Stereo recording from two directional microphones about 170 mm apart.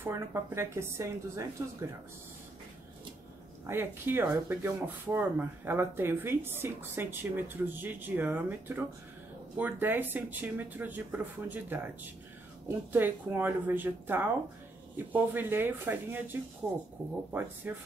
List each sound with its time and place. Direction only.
0.0 s speech: 15° right (ahead or behind)
3.6 s speech: 15° right (ahead or behind)